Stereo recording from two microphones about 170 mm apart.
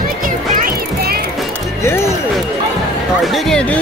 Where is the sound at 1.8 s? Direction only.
15° left (ahead or behind).